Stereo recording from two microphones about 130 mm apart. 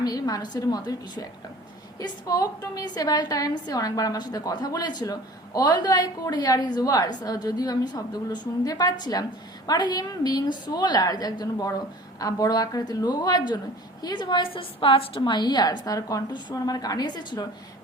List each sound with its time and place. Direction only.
0.0 s a woman's voice: 30° left (ahead or behind)